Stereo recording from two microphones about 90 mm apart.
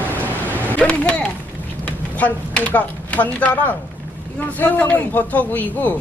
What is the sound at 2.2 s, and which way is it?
A man's voice, 15° left (ahead or behind).